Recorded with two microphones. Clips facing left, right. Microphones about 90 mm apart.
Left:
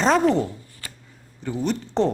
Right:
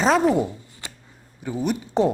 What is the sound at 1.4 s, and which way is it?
Speech, 10° right (ahead or behind).